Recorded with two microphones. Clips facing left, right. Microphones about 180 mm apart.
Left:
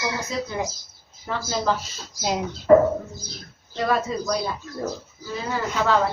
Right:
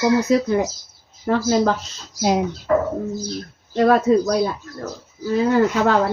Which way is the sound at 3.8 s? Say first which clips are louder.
Right 9 dB; 55° right (ahead or behind).